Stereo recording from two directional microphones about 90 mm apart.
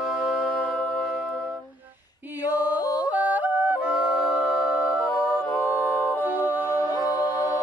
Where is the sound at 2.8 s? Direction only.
45° left (ahead or behind).